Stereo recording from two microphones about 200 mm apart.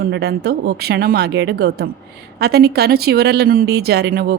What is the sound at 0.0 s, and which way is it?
A woman's voice, 55° right (ahead or behind).